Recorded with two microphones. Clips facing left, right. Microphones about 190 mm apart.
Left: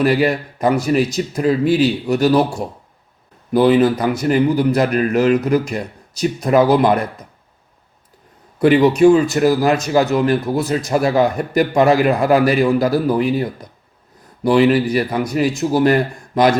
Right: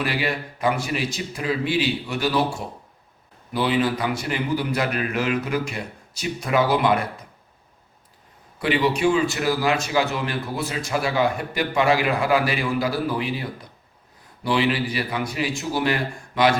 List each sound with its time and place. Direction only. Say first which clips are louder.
0.0 s a man's voice: left 10 dB; 45° left (ahead or behind)
8.5 s speech: left 10 dB; 45° left (ahead or behind)